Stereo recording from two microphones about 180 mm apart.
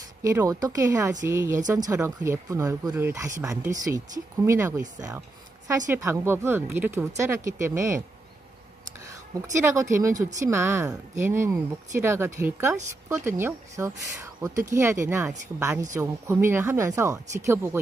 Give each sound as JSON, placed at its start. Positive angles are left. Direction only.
{"t": 0.2, "sound": "speech", "side_deg": -15}
{"t": 9.6, "sound": "speech", "side_deg": -15}